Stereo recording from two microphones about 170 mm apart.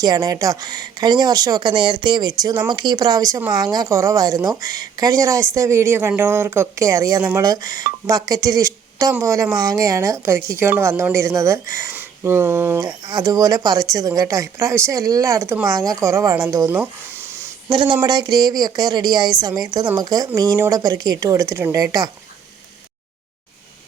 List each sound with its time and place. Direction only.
0.0 s speech: 20° right (ahead or behind)
17.7 s speech: 25° right (ahead or behind)